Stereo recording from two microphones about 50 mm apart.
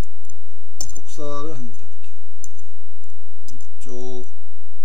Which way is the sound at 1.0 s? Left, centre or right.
Centre.